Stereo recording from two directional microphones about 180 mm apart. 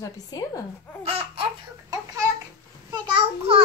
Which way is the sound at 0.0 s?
20° left (ahead or behind).